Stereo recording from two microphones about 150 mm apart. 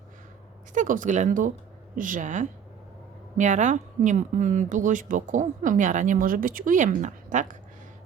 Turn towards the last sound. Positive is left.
turn(degrees=-55)  # may be behind; listen again after turning